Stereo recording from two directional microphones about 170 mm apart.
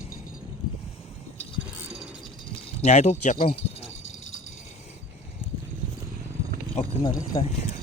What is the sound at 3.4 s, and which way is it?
Speech, 65° left (ahead or behind).